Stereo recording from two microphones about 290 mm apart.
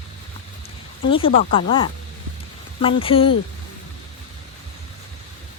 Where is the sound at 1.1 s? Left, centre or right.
Centre.